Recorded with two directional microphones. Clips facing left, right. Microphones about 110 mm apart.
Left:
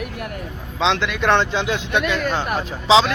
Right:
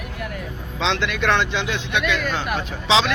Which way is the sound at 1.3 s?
35° left (ahead or behind).